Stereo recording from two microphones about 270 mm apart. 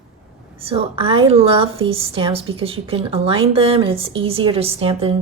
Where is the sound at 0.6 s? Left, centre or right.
Centre.